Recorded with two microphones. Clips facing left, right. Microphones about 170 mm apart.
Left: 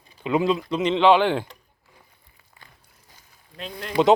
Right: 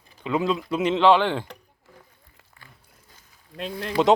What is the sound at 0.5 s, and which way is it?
Speech, 5° right (ahead or behind).